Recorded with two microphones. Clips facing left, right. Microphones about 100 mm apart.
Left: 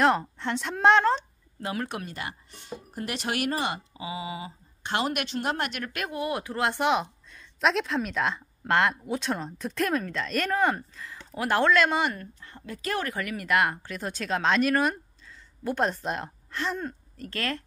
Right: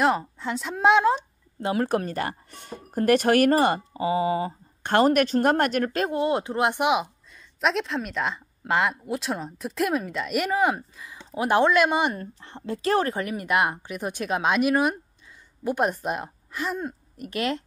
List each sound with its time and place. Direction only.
0.0 s a woman's voice: centre (ahead or behind)
1.6 s speech: 30° right (ahead or behind)
1.9 s speech: 40° right (ahead or behind)
6.0 s a woman's voice: 25° right (ahead or behind)